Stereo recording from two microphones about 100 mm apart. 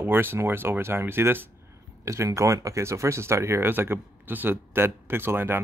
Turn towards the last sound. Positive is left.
turn(degrees=-25)  # may be behind; listen again after turning